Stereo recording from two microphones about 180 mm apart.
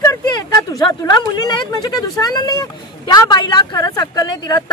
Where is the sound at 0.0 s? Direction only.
20° left (ahead or behind).